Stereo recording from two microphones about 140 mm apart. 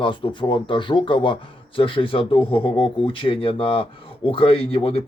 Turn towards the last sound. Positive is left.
turn(degrees=45)  # may be behind; listen again after turning